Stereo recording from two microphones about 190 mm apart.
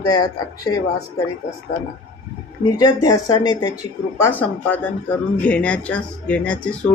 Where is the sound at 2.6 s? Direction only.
20° left (ahead or behind).